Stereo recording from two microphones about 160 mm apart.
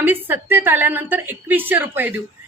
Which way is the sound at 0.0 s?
10° right (ahead or behind).